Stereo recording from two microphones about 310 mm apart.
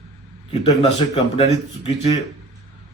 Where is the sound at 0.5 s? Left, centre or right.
Left.